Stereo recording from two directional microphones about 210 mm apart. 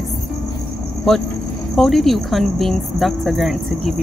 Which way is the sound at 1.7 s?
Centre (ahead or behind).